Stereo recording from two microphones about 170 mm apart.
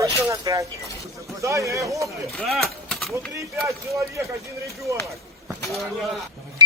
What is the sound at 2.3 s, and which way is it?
Speech, centre (ahead or behind).